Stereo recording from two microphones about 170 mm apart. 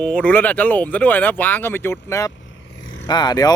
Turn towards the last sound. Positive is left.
turn(degrees=25)  # may be behind; listen again after turning